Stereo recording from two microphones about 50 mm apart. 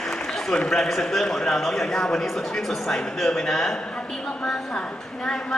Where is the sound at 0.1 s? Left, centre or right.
Centre.